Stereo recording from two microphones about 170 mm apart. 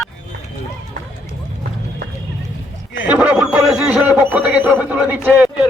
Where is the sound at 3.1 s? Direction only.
5° right (ahead or behind).